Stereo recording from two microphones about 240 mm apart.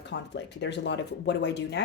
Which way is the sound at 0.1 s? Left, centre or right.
Left.